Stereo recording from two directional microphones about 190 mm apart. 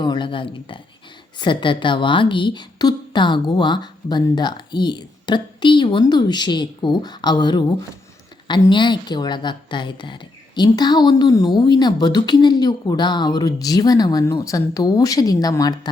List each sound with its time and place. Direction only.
0.0 s a woman's voice: 25° left (ahead or behind)